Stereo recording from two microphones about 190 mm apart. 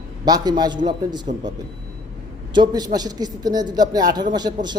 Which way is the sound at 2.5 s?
20° right (ahead or behind).